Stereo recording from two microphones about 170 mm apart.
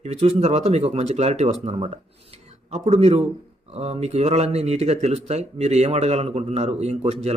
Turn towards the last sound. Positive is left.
turn(degrees=-40)  # may be behind; listen again after turning